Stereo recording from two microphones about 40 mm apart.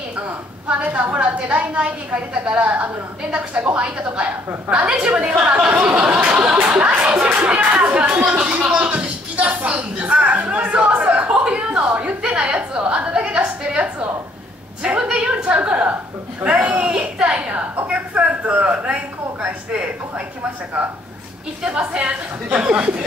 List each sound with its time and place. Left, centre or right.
0.9 s a woman's voice: right
5.7 s speech: right
6.2 s a woman's voice: right
6.7 s a woman's voice: right
10.4 s a sound: right
16.4 s a woman's voice: right
21.6 s a woman's voice: right